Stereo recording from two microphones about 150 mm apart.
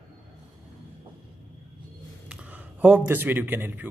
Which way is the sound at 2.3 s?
10° right (ahead or behind).